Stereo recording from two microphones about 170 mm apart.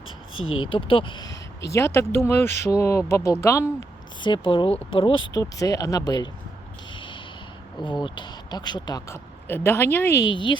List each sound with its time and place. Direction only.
0.7 s speech: 30° left (ahead or behind)
1.6 s speech: 15° left (ahead or behind)
4.2 s speech: 30° left (ahead or behind)
5.3 s speech: 20° left (ahead or behind)
6.9 s a sound: 30° left (ahead or behind)
7.9 s speech: 25° left (ahead or behind)